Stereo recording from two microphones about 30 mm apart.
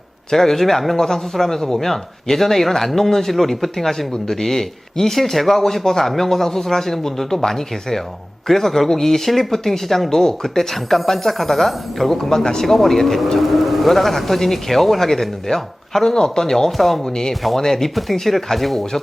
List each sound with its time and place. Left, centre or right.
0.3 s a man's voice: centre
13.4 s a man's voice: centre
16.7 s a man's voice: centre
17.0 s speech: left
17.6 s a man's voice: centre